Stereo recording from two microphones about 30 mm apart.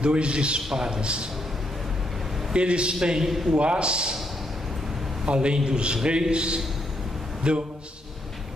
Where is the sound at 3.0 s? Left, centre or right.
Right.